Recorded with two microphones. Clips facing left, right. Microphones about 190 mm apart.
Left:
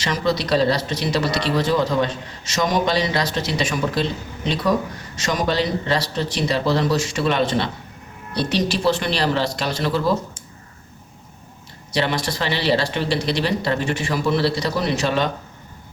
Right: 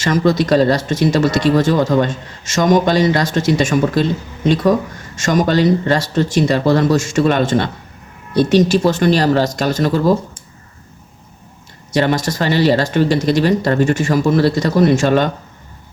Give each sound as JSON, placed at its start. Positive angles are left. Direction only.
{"t": 0.0, "sound": "speech", "side_deg": -50}
{"t": 11.9, "sound": "speech", "side_deg": -45}